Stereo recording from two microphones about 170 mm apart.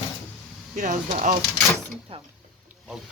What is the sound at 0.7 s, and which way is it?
Speech, 45° right (ahead or behind).